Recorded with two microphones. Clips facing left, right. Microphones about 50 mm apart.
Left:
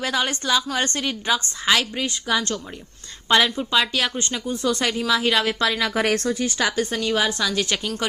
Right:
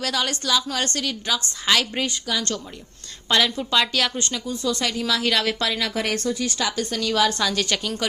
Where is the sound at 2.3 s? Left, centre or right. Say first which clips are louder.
Left 7 dB; left.